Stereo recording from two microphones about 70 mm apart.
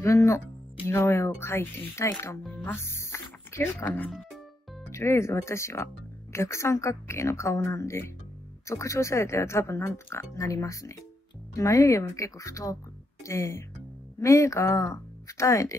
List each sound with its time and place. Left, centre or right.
0.0 s speech: left
3.7 s speech: left
4.8 s speech: left
10.6 s a woman's voice: left